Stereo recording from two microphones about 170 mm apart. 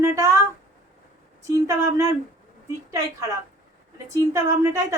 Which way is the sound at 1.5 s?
20° right (ahead or behind).